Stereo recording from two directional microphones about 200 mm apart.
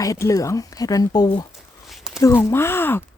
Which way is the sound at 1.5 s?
Centre (ahead or behind).